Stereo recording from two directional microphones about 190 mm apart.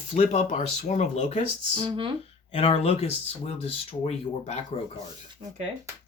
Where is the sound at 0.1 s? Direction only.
35° left (ahead or behind).